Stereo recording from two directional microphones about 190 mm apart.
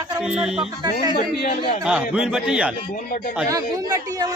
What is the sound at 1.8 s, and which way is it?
Speech, 5° right (ahead or behind).